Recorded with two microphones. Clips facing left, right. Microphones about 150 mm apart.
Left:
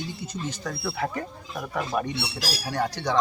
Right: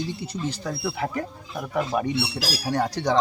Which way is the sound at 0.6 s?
10° right (ahead or behind).